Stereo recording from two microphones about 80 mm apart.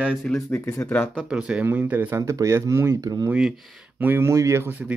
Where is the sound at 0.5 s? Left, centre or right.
Left.